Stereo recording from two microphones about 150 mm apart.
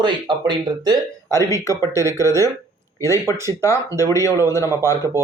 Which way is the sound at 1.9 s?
20° right (ahead or behind).